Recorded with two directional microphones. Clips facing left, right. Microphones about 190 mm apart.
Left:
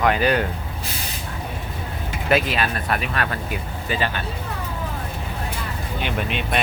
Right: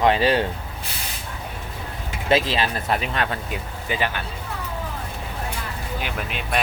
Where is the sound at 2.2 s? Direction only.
25° right (ahead or behind).